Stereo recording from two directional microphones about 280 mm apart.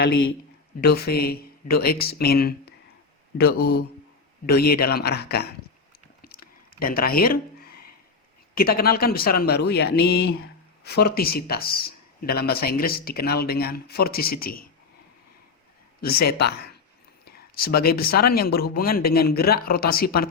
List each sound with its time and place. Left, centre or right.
0.8 s speech: left
6.2 s a sound: left
8.5 s speech: left
16.0 s speech: left